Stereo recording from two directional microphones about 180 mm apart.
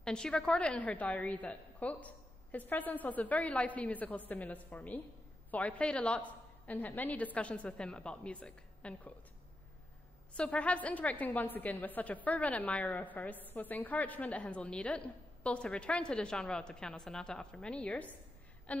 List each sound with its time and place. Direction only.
0.0 s a woman's voice: 5° left (ahead or behind)
10.3 s a woman's voice: 5° left (ahead or behind)
18.7 s a sound: 10° left (ahead or behind)